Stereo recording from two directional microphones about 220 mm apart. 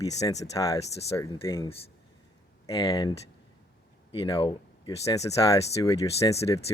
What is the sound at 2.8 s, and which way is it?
Speech, 15° left (ahead or behind).